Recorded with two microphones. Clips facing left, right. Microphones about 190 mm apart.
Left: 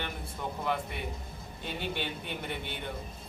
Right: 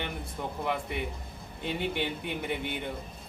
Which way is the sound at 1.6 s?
15° right (ahead or behind).